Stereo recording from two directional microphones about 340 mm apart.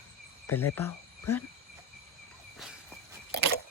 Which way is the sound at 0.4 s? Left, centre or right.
Centre.